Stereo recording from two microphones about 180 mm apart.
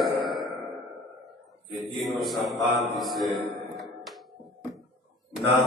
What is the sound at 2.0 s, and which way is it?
Mantra, centre (ahead or behind).